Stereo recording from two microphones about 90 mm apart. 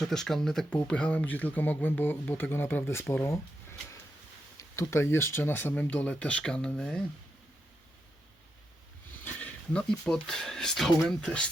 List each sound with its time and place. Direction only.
0.0 s speech: 5° left (ahead or behind)
9.2 s a sound: 15° left (ahead or behind)
10.2 s speech: 5° left (ahead or behind)